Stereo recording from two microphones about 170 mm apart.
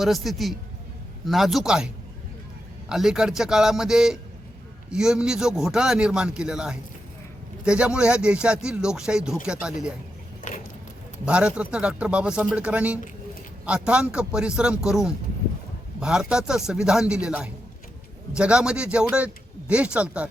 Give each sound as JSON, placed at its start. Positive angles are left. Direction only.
{"t": 0.0, "sound": "speech", "side_deg": 0}
{"t": 2.9, "sound": "speech", "side_deg": -5}
{"t": 10.5, "sound": "a sound", "side_deg": 45}
{"t": 11.3, "sound": "speech", "side_deg": -5}